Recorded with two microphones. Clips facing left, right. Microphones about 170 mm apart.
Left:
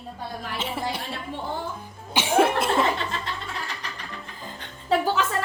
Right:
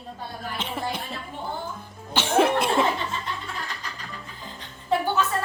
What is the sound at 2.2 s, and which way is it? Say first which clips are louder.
Cough: even; 10° left (ahead or behind).